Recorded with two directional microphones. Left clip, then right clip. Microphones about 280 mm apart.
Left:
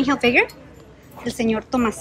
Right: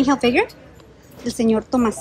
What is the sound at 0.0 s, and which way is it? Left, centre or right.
A woman's voice, centre.